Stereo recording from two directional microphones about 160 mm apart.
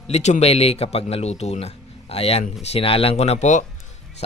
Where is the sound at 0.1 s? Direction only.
45° left (ahead or behind).